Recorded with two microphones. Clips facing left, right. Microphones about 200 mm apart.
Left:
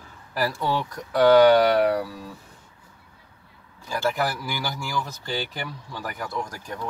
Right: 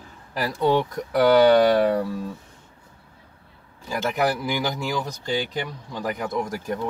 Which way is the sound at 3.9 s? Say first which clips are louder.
Right 2 dB; 20° right (ahead or behind).